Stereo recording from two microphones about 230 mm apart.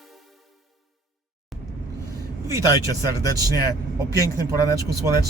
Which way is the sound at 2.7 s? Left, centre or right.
Centre.